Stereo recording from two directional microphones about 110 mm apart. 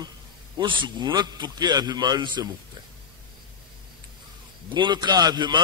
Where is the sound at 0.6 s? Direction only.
45° right (ahead or behind).